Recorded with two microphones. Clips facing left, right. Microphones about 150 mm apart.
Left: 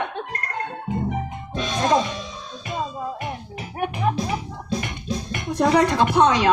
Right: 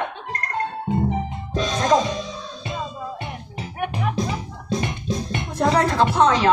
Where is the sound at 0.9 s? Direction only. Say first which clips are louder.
Right 2 dB; 35° right (ahead or behind).